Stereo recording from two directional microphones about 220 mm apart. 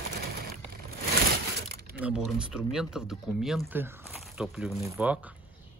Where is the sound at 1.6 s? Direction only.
45° right (ahead or behind).